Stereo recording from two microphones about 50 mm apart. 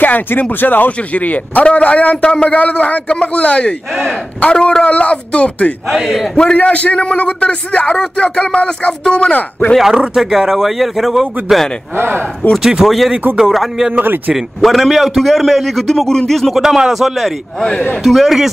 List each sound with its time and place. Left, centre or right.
0.0 s a man's voice: left
3.9 s a man's voice: centre
4.4 s a man's voice: left
5.9 s a man's voice: centre
6.3 s a man's voice: left
9.8 s a man's voice: centre
12.0 s speech: right
12.5 s speech: centre
12.8 s a man's voice: centre
13.9 s a man's voice: right
14.6 s a man's voice: centre
16.5 s a man's voice: centre
17.6 s a man's voice: centre
18.0 s a man's voice: centre